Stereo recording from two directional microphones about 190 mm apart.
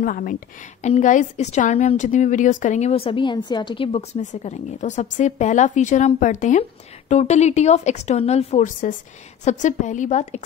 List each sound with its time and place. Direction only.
0.0 s a woman's voice: 45° left (ahead or behind)